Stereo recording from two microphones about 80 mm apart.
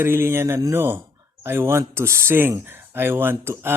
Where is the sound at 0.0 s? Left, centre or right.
Right.